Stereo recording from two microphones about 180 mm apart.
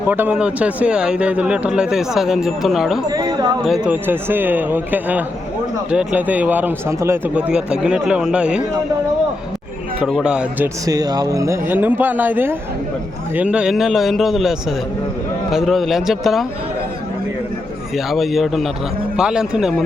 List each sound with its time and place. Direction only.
0.1 s speech: 10° right (ahead or behind)
3.1 s speech: 20° right (ahead or behind)
3.8 s speech: 10° right (ahead or behind)
10.0 s speech: 5° right (ahead or behind)
10.8 s speech: 20° right (ahead or behind); by 14.5 s centre (ahead or behind)
15.5 s speech: centre (ahead or behind)
17.9 s speech: centre (ahead or behind)